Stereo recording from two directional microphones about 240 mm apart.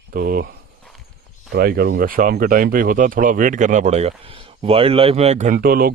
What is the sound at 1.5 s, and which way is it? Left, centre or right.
Speech, right.